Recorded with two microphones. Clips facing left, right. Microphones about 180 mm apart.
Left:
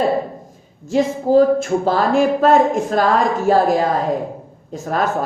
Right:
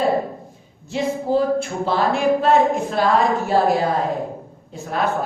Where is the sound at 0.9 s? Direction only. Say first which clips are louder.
Left 5 dB; 45° left (ahead or behind).